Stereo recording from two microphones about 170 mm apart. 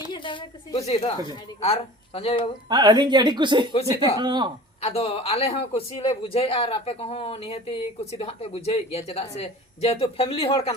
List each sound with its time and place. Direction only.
0.1 s a woman's voice: 30° left (ahead or behind)
0.9 s speech: 40° left (ahead or behind)
2.6 s a woman's voice: 25° right (ahead or behind)
4.8 s speech: 35° left (ahead or behind)